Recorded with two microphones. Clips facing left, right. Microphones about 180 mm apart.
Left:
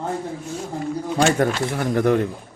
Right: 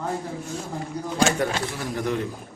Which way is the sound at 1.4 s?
60° left (ahead or behind).